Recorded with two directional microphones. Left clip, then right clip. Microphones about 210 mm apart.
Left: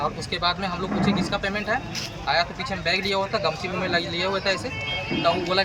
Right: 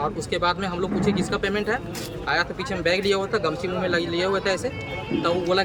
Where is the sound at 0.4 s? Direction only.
25° right (ahead or behind).